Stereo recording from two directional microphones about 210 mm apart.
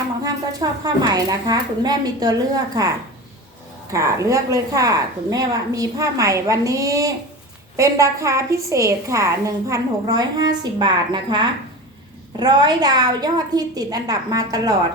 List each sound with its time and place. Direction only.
0.2 s a woman's voice: 15° right (ahead or behind)
3.9 s a woman's voice: 15° right (ahead or behind)